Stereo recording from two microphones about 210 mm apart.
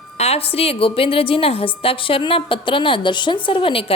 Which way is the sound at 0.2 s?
30° left (ahead or behind).